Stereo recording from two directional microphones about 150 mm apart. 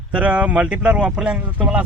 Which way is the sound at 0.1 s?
10° right (ahead or behind).